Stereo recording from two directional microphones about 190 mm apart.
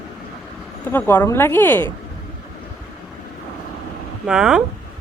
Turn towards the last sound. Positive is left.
turn(degrees=-5)  # may be behind; listen again after turning